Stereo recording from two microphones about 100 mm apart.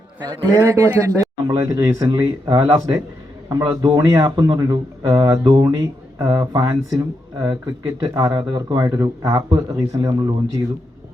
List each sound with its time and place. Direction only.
0.6 s speech: 30° right (ahead or behind)